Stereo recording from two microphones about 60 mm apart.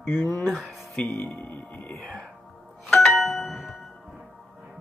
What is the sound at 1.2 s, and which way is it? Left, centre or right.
Speech, left.